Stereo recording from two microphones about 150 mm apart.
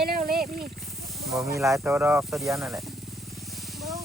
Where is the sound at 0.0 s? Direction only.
80° right.